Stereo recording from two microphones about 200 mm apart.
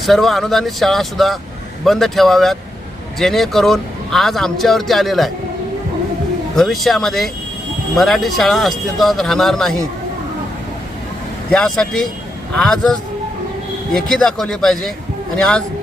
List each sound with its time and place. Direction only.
0.0 s speech: centre (ahead or behind)
6.6 s speech: centre (ahead or behind)
11.5 s speech: 5° left (ahead or behind)